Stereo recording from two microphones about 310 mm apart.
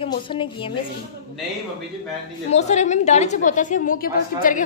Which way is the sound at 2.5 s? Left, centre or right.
Left.